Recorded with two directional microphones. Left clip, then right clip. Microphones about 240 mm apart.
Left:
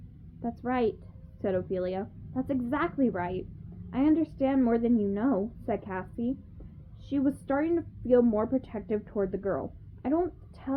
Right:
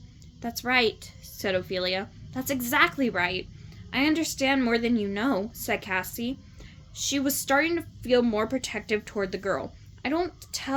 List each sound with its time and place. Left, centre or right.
0.4 s a woman's voice: centre